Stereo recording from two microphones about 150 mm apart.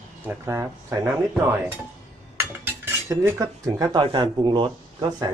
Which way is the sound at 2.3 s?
15° right (ahead or behind).